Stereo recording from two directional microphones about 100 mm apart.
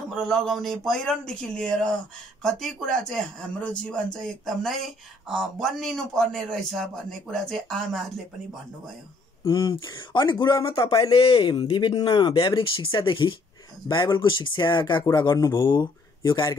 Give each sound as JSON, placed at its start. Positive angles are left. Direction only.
{"t": 0.1, "sound": "speech", "side_deg": 5}
{"t": 9.6, "sound": "a man's voice", "side_deg": 35}
{"t": 9.9, "sound": "speech", "side_deg": 45}
{"t": 11.0, "sound": "speech", "side_deg": 65}
{"t": 15.0, "sound": "a man's voice", "side_deg": 40}
{"t": 15.6, "sound": "speech", "side_deg": 50}